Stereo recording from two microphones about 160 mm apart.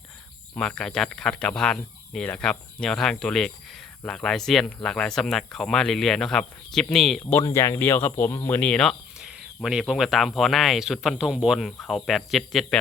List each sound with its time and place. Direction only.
0.5 s speech: 5° left (ahead or behind)
7.3 s speech: 15° left (ahead or behind); by 12.6 s centre (ahead or behind)